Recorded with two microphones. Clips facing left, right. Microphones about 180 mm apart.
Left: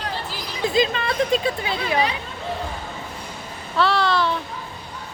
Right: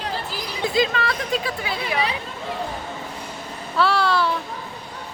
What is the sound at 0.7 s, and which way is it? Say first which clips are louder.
Speech: even; 20° left (ahead or behind).